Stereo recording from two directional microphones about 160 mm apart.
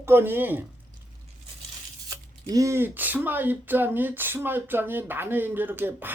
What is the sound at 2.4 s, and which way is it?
Speech, 20° right (ahead or behind).